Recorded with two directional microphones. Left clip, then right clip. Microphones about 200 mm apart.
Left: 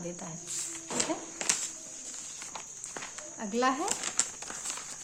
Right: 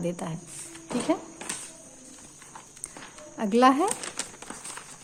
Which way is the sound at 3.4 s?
40° right (ahead or behind).